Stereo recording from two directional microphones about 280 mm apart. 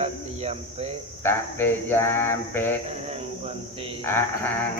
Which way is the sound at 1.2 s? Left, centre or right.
Centre.